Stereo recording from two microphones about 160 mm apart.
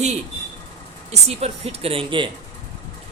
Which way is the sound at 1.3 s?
40° right (ahead or behind).